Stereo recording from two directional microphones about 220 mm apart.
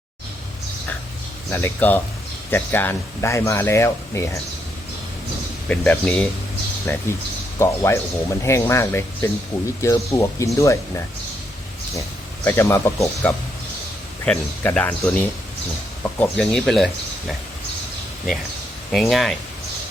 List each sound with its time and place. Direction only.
1.5 s speech: 10° left (ahead or behind)
5.6 s speech: 5° left (ahead or behind)
12.5 s speech: 10° left (ahead or behind)
18.9 s speech: centre (ahead or behind)